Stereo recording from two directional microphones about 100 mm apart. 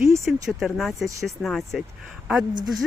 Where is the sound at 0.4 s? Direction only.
Centre (ahead or behind).